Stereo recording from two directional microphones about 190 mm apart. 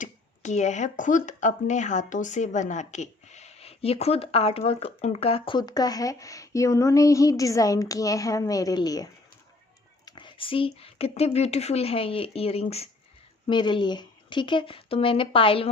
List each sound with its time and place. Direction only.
0.0 s speech: 40° left (ahead or behind); by 9.0 s 20° left (ahead or behind)
10.1 s speech: 25° left (ahead or behind)